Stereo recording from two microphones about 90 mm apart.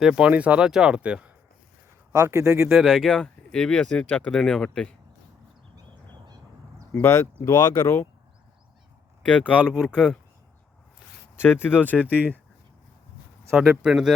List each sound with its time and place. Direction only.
0.0 s speech: 5° right (ahead or behind)
2.1 s speech: 30° right (ahead or behind)
2.7 s speech: 5° left (ahead or behind)
5.7 s a sound: 50° right (ahead or behind)
7.0 s speech: 30° left (ahead or behind)
9.2 s speech: 15° left (ahead or behind)
11.3 s speech: 25° left (ahead or behind)
13.6 s speech: 5° right (ahead or behind)